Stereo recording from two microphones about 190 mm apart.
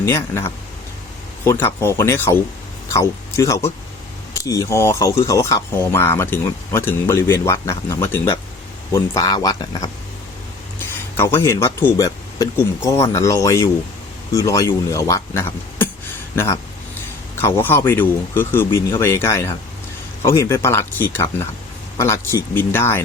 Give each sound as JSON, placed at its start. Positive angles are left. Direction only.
{"t": 0.0, "sound": "speech", "side_deg": 15}